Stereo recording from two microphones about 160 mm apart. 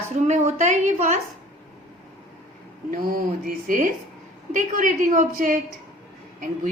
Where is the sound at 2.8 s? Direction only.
65° right (ahead or behind).